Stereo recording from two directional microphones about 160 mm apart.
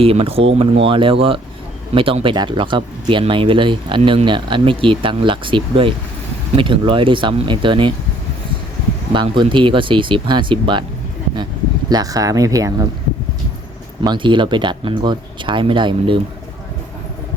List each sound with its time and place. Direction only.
0.0 s speech: 35° right (ahead or behind)
9.1 s speech: 30° right (ahead or behind)
11.9 s speech: 25° right (ahead or behind)
14.0 s speech: 30° right (ahead or behind)